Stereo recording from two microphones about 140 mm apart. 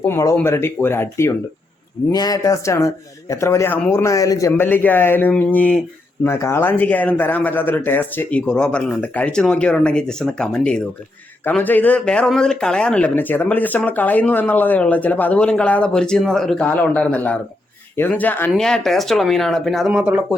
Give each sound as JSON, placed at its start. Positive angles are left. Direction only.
{"t": 0.1, "sound": "speech", "side_deg": 20}